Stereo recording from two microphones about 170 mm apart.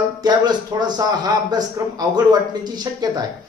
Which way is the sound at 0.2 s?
25° right (ahead or behind).